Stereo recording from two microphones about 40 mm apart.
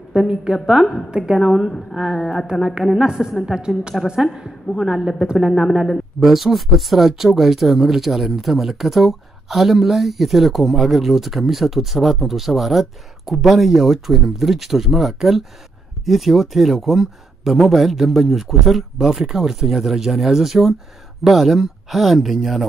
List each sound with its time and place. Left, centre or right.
0.3 s a woman's voice: centre
5.9 s speech: centre